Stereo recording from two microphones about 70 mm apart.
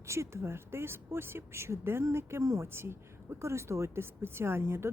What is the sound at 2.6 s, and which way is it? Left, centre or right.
A woman's voice, right.